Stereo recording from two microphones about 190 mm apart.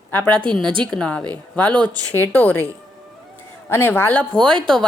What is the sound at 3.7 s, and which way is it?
Speech, 10° left (ahead or behind).